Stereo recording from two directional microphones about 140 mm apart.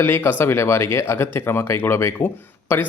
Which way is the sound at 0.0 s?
15° left (ahead or behind).